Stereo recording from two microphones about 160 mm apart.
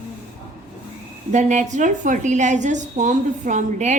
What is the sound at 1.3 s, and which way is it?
A woman's voice, 50° right (ahead or behind).